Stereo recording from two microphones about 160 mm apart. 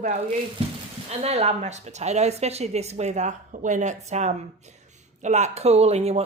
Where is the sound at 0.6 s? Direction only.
40° right (ahead or behind).